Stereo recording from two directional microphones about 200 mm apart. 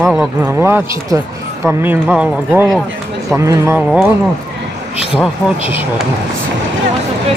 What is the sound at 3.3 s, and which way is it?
Speech, 15° right (ahead or behind).